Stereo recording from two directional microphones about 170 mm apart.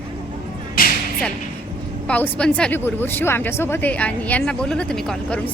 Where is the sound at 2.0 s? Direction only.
10° left (ahead or behind).